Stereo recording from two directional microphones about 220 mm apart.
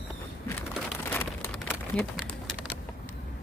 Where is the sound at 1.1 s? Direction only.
5° left (ahead or behind).